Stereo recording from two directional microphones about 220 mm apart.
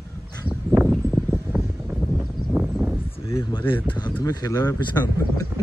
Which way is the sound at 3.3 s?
15° left (ahead or behind).